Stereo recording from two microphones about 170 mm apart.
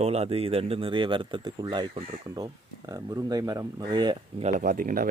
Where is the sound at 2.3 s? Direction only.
20° right (ahead or behind).